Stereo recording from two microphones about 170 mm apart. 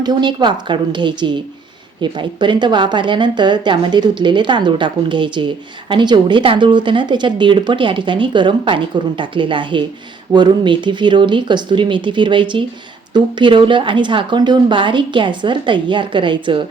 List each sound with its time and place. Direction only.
0.0 s speech: 25° right (ahead or behind)